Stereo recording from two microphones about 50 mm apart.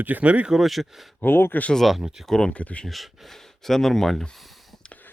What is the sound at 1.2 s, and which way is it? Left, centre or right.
Speech, left.